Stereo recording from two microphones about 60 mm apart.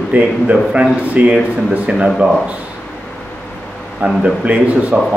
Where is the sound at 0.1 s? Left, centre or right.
Centre.